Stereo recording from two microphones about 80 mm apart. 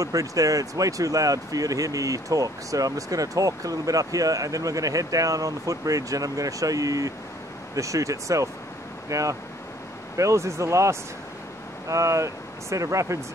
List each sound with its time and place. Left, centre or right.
0.0 s speech: right